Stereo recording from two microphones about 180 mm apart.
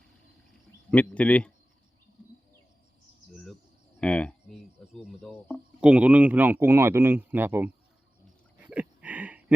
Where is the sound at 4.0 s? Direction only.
5° left (ahead or behind).